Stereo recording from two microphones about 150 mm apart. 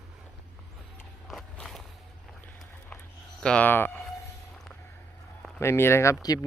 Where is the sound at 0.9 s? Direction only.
Centre (ahead or behind).